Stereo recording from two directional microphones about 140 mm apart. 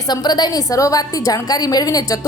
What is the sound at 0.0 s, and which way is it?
A woman's voice, 30° left (ahead or behind).